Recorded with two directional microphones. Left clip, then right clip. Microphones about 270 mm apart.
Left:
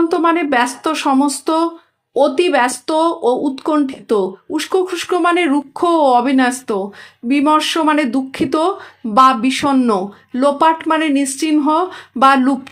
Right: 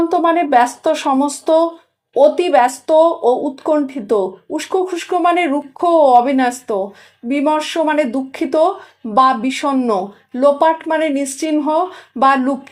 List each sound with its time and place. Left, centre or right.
0.1 s speech: left